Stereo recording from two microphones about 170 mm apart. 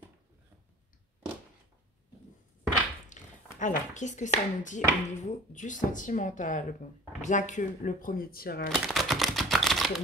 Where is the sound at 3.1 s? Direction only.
45° left (ahead or behind).